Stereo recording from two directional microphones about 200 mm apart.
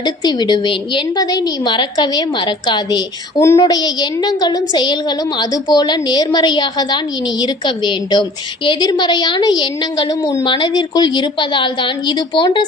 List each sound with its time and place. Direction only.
0.0 s a woman's voice: 20° left (ahead or behind)